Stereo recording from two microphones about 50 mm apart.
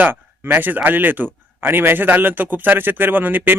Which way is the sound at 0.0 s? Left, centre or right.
Right.